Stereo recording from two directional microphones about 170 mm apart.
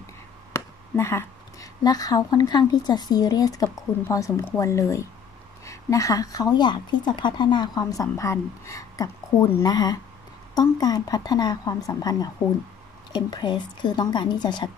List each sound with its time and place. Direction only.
0.5 s a woman's voice: 15° left (ahead or behind)